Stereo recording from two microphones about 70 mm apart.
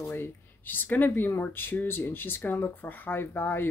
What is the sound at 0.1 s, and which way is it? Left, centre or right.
Speech, left.